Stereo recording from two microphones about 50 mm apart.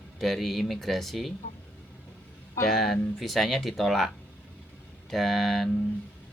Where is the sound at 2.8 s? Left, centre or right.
Centre.